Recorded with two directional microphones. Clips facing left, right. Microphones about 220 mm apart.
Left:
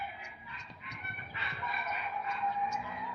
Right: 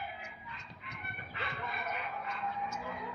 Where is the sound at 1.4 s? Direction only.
55° right (ahead or behind).